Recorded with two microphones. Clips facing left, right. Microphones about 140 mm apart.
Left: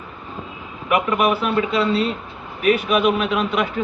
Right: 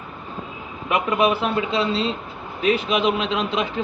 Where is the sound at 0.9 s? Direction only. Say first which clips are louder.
Left 1 dB; 25° right (ahead or behind).